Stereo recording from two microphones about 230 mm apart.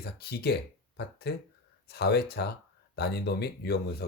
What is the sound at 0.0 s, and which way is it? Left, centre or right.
Speech, left.